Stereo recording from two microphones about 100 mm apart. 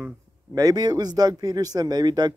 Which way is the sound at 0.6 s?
40° right (ahead or behind).